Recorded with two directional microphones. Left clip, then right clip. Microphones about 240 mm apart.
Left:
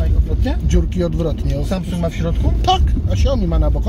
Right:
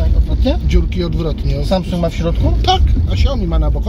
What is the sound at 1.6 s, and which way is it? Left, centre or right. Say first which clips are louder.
Speech: right 8 dB; centre.